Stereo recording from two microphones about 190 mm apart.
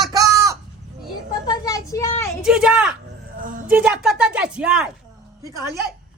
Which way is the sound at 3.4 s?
45° right (ahead or behind).